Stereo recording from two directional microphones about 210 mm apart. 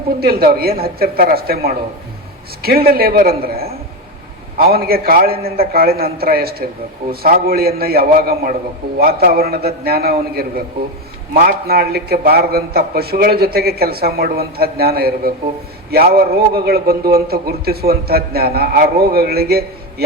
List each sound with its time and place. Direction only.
0.2 s a man's voice: 45° right (ahead or behind)